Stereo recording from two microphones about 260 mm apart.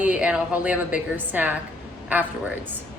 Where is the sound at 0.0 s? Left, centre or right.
Centre.